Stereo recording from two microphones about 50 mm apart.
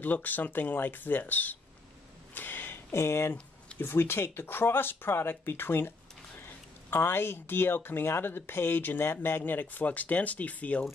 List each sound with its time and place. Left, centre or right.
0.0 s speech: left
2.3 s a sound: left
2.9 s speech: left
3.8 s speech: left